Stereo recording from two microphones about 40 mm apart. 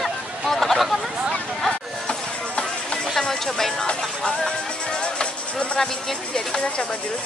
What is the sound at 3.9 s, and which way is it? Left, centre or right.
Music, centre.